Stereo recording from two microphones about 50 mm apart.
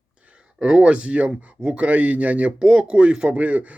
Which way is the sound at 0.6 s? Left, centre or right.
Centre.